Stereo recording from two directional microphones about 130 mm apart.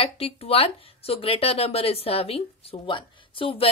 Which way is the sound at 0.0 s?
50° left (ahead or behind).